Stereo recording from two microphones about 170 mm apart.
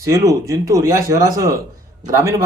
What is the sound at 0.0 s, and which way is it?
A man's voice, 20° right (ahead or behind).